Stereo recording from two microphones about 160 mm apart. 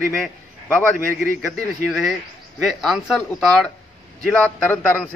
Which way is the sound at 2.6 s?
Centre (ahead or behind).